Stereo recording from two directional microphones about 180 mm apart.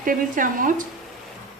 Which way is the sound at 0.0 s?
50° right (ahead or behind).